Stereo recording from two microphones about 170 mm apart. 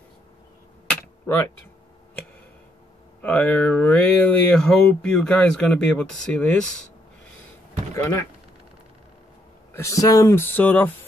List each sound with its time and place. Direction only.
0.8 s typing: 15° left (ahead or behind)
3.2 s speech: 5° left (ahead or behind)
9.8 s speech: 20° left (ahead or behind)